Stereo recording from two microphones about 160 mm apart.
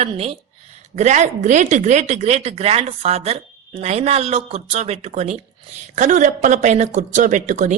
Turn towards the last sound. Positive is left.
turn(degrees=-50)  # may be behind; listen again after turning